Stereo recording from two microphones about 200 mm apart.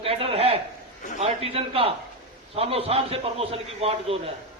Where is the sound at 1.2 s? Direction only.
30° right (ahead or behind).